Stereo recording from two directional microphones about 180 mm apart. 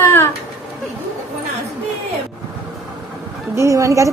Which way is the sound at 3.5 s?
15° right (ahead or behind).